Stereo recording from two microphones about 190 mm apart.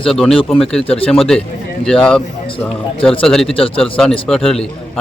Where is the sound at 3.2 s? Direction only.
Centre (ahead or behind).